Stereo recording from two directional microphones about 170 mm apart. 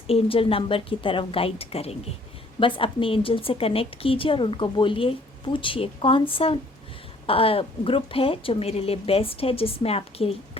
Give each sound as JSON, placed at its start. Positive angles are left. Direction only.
{"t": 0.1, "sound": "speech", "side_deg": 35}